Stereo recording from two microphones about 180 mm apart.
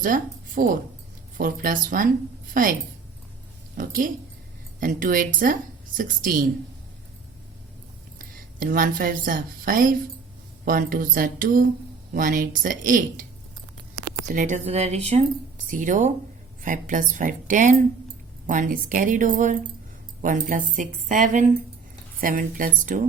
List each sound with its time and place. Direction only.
0.0 s a woman's voice: 50° right (ahead or behind)
3.8 s a woman's voice: 50° right (ahead or behind)
8.2 s a woman's voice: 50° right (ahead or behind)
14.3 s speech: 45° right (ahead or behind)
15.6 s a woman's voice: 45° right (ahead or behind)